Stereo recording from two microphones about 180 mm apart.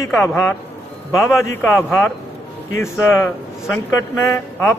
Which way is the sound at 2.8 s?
15° left (ahead or behind).